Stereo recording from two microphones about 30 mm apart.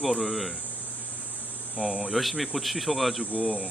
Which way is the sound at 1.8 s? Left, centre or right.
Right.